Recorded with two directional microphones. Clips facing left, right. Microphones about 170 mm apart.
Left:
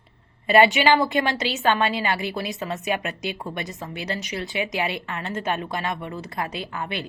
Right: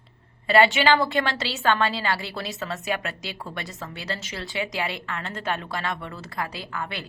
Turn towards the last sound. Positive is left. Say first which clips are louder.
# left 3 dB
turn(degrees=20)  # may be behind; listen again after turning